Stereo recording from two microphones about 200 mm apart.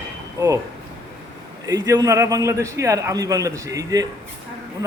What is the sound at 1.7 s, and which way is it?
A man's voice, 20° right (ahead or behind).